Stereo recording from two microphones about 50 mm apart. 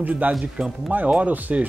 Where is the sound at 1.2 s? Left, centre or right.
Right.